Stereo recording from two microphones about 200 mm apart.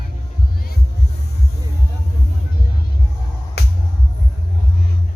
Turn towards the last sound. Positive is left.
turn(degrees=55)  # may be behind; listen again after turning